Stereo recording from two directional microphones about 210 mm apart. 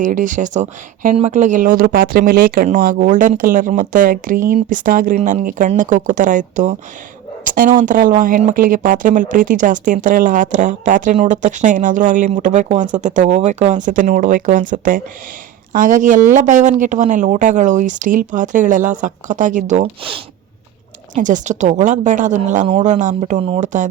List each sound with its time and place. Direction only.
0.0 s speech: 40° right (ahead or behind)
21.2 s speech: 35° right (ahead or behind)